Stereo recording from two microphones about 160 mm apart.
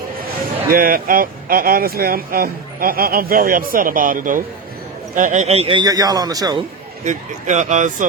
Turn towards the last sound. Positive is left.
turn(degrees=-50)  # may be behind; listen again after turning